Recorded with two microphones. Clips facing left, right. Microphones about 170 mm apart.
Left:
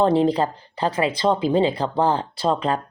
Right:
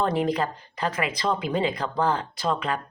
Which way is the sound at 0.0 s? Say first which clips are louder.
Left 6 dB; 30° left (ahead or behind).